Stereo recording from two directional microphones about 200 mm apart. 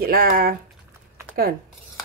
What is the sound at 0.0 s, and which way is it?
Speech, 50° right (ahead or behind).